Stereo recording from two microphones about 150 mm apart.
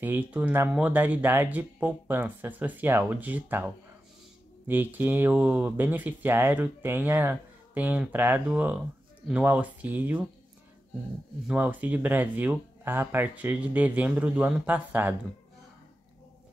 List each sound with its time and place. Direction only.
0.0 s speech: 10° right (ahead or behind)
11.4 s speech: 10° right (ahead or behind)